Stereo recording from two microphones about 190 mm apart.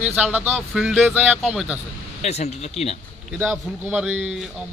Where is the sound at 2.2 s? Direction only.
35° left (ahead or behind).